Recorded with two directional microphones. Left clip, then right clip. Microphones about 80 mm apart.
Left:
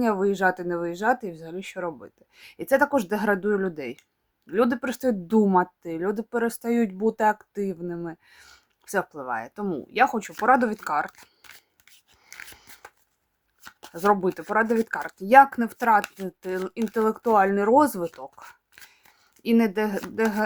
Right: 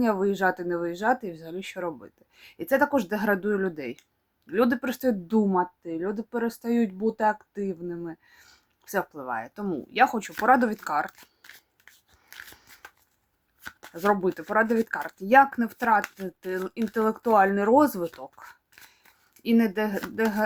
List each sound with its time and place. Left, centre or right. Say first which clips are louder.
0.0 s speech: left 2 dB; left
2.3 s speech: left 3 dB; left
5.5 s speech: left 4 dB; left
8.8 s speech: left 2 dB; left
12.2 s dog: left 2 dB; left
13.6 s shuffling cards: left 2 dB; centre
14.4 s speech: even; centre